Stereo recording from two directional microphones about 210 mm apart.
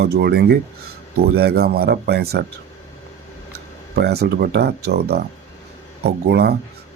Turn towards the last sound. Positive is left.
turn(degrees=-50)  # may be behind; listen again after turning